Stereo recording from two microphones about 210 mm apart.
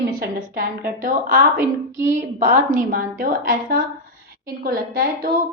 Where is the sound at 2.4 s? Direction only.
35° right (ahead or behind).